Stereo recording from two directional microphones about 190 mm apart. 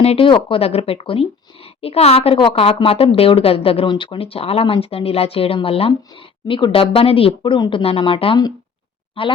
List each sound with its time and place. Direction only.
0.0 s a woman's voice: 30° left (ahead or behind)